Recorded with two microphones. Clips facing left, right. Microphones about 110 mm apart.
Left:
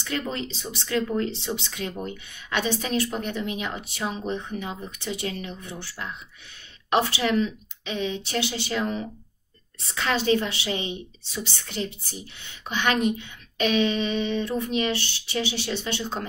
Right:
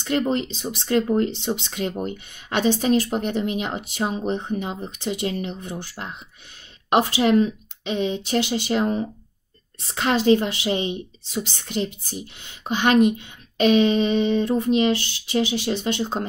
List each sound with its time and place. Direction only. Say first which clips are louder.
0.2 s a woman's voice: right 8 dB; 35° right (ahead or behind)
1.5 s speech: right 5 dB; 50° right (ahead or behind)
1.9 s a woman's voice: right 5 dB; 35° right (ahead or behind)
7.2 s speech: right 6 dB; 45° right (ahead or behind)
7.9 s a woman's voice: right 5 dB; 30° right (ahead or behind)
8.5 s a woman's voice: right 6 dB; 40° right (ahead or behind)